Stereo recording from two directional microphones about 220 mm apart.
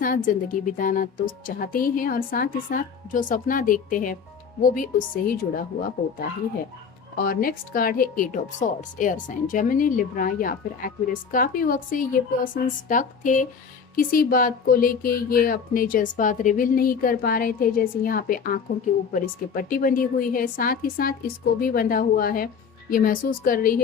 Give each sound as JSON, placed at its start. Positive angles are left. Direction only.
{"t": 0.0, "sound": "speech", "side_deg": 40}
{"t": 7.3, "sound": "speech", "side_deg": 40}